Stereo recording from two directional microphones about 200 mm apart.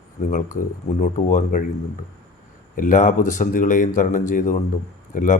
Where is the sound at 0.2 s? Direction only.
35° left (ahead or behind).